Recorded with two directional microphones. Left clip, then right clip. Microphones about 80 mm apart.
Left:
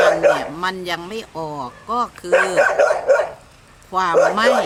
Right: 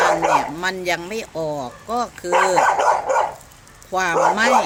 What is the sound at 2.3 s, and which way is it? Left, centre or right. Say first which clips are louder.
Dog: left 1 dB; centre.